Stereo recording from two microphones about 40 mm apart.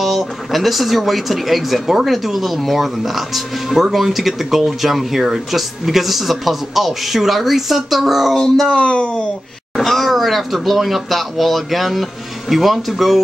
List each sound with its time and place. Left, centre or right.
0.0 s speech: centre
8.7 s speech: left
9.8 s speech: centre